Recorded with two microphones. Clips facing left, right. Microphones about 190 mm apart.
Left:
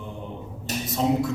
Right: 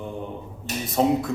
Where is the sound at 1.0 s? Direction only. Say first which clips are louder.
Right 3 dB; 55° right (ahead or behind).